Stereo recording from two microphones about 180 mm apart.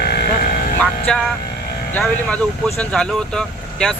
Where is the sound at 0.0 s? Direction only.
60° left (ahead or behind).